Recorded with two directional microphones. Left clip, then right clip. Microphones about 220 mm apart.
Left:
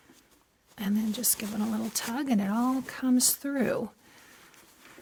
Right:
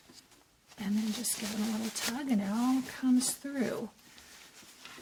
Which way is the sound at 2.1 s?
45° left (ahead or behind).